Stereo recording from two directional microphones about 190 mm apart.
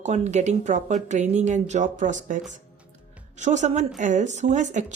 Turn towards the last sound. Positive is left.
turn(degrees=-40)  # may be behind; listen again after turning